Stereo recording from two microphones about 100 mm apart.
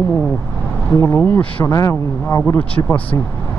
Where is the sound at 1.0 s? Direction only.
20° left (ahead or behind).